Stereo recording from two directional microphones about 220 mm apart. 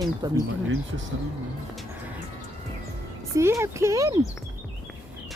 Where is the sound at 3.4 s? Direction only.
10° right (ahead or behind).